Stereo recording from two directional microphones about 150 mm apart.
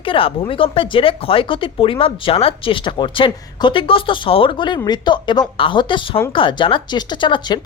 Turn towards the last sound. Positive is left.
turn(degrees=30)  # may be behind; listen again after turning